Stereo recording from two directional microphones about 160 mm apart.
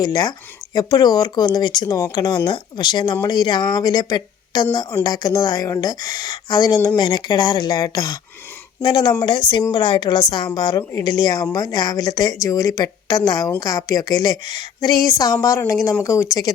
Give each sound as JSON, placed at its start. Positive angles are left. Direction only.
{"t": 0.0, "sound": "speech", "side_deg": 25}